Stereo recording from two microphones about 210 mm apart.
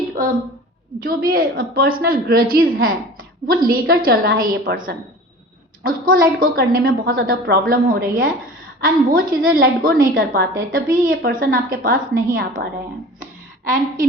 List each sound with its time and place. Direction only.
0.9 s a woman's voice: 45° right (ahead or behind)